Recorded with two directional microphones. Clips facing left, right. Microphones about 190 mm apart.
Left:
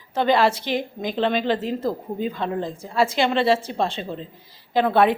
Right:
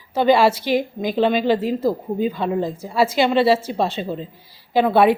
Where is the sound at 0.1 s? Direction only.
10° right (ahead or behind).